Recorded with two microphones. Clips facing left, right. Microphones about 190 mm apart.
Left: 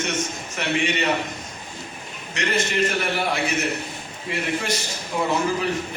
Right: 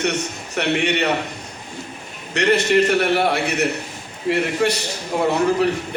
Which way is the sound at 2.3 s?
65° right (ahead or behind).